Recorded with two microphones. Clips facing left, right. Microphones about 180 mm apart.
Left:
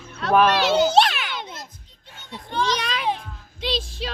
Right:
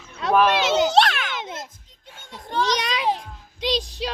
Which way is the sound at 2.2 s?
45° right (ahead or behind).